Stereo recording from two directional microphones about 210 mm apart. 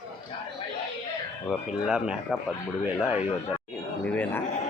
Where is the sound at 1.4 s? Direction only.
Centre (ahead or behind).